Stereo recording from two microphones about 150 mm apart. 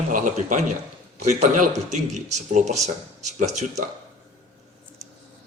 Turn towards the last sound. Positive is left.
turn(degrees=-50)  # may be behind; listen again after turning